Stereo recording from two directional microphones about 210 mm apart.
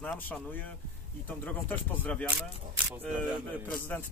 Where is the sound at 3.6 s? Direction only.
10° left (ahead or behind).